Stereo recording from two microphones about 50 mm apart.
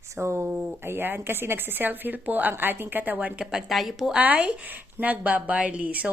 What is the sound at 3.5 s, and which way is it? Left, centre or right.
Speech, centre.